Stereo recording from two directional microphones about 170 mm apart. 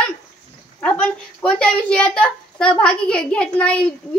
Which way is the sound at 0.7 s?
10° left (ahead or behind).